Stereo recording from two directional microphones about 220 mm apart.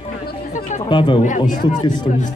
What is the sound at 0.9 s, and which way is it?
Speech, 20° left (ahead or behind).